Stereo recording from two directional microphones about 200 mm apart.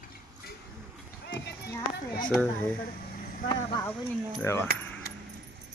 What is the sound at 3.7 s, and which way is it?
Speech, 15° left (ahead or behind).